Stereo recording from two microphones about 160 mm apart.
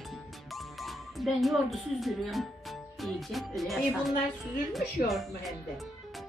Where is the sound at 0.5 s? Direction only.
Centre (ahead or behind).